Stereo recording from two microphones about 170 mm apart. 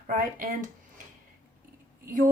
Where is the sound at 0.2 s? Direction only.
55° right (ahead or behind).